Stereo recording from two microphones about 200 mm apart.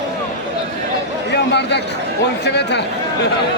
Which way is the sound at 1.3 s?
60° left (ahead or behind).